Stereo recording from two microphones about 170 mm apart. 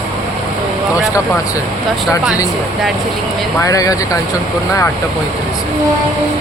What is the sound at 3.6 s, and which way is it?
Speech, 20° left (ahead or behind).